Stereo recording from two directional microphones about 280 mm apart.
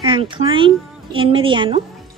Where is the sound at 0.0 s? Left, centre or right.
Centre.